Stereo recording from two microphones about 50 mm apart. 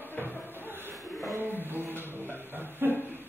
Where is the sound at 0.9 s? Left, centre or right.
Right.